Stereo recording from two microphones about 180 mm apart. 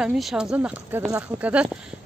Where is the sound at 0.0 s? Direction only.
5° right (ahead or behind).